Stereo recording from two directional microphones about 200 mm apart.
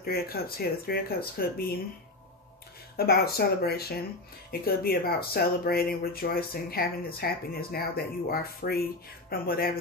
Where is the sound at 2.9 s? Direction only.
50° left (ahead or behind).